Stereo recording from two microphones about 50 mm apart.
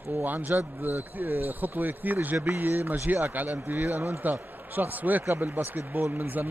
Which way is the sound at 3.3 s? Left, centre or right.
Right.